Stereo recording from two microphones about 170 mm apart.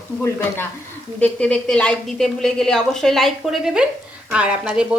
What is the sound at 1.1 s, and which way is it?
Speech, 10° left (ahead or behind).